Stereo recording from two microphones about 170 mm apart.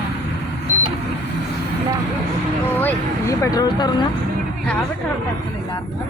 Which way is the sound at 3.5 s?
25° left (ahead or behind).